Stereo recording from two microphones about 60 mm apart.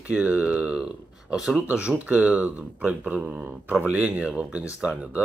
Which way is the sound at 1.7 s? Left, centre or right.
Centre.